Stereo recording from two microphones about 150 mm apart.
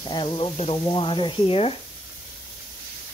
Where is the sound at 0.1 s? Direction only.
30° left (ahead or behind).